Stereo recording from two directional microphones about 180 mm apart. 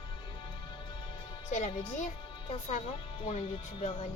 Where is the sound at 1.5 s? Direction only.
40° left (ahead or behind).